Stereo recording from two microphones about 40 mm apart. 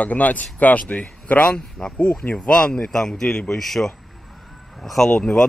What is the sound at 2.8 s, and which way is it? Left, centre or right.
Speech, centre.